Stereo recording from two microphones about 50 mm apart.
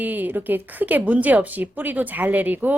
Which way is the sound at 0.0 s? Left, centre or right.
Right.